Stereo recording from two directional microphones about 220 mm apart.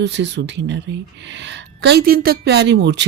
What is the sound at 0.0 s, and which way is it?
A woman's voice, 55° right (ahead or behind).